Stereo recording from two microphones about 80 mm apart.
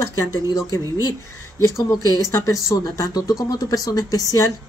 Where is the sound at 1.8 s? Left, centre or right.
Left.